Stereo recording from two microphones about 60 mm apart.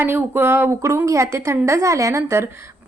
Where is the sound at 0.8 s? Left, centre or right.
Right.